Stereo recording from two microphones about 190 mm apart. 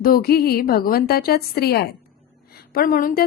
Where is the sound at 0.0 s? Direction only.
50° left (ahead or behind).